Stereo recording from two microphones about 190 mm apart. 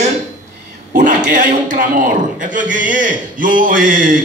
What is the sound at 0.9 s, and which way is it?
A man's voice, 40° right (ahead or behind).